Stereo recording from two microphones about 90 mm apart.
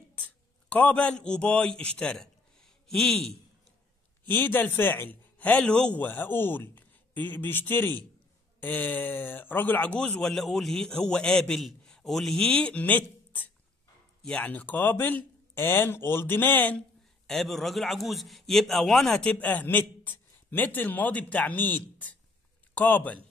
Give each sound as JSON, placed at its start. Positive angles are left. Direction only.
{"t": 0.2, "sound": "a man's voice", "side_deg": 15}
{"t": 4.3, "sound": "a man's voice", "side_deg": 20}
{"t": 17.3, "sound": "a man's voice", "side_deg": 5}